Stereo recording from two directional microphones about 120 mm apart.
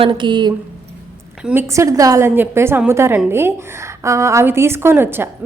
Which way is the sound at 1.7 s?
25° right (ahead or behind).